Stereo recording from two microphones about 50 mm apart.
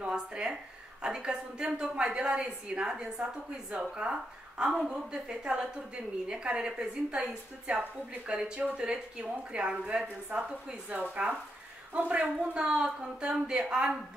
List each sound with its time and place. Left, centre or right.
0.0 s a woman's voice: centre